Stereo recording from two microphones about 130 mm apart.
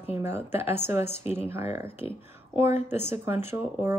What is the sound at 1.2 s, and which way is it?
Speech, 50° left (ahead or behind).